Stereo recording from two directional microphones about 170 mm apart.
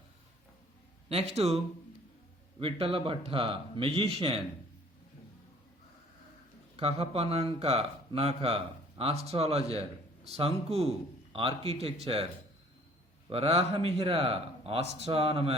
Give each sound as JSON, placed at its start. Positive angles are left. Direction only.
{"t": 1.1, "sound": "speech", "side_deg": -35}
{"t": 2.6, "sound": "speech", "side_deg": -35}
{"t": 6.7, "sound": "speech", "side_deg": -35}
{"t": 13.3, "sound": "speech", "side_deg": -35}